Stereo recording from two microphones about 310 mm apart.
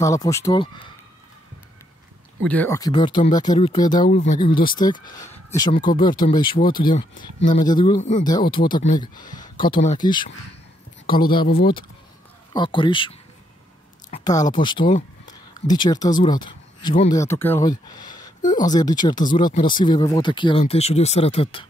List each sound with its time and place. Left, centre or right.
0.0 s speech: centre
2.4 s speech: centre; by 10.0 s left
12.5 s speech: centre